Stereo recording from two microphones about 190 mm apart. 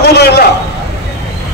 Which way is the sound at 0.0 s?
60° left (ahead or behind).